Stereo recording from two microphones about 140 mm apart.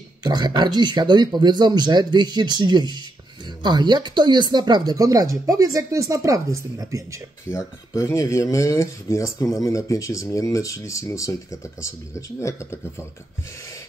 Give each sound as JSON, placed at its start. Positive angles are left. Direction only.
{"t": 0.2, "sound": "speech", "side_deg": -30}
{"t": 7.4, "sound": "speech", "side_deg": 20}